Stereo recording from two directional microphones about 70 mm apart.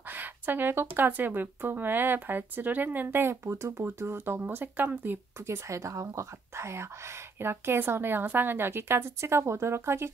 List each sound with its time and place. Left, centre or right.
0.0 s speech: right
3.4 s speech: right